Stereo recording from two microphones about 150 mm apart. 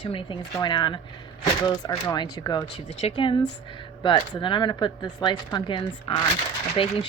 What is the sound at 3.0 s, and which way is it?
Speech, 35° left (ahead or behind).